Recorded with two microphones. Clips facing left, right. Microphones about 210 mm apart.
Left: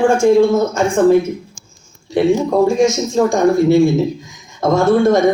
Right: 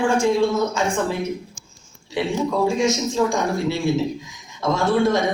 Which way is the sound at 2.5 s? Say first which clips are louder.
Left 7 dB; 45° left (ahead or behind).